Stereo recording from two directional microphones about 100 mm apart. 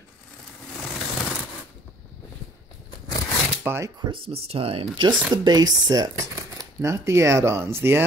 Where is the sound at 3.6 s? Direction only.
25° right (ahead or behind).